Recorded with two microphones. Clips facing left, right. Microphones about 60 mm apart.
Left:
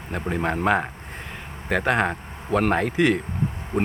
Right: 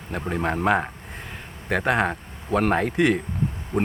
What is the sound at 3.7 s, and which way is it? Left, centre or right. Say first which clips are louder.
Speech: even; left.